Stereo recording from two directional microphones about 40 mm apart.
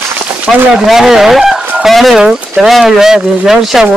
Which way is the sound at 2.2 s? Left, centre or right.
Centre.